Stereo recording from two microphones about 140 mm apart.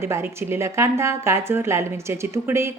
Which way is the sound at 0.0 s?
20° right (ahead or behind).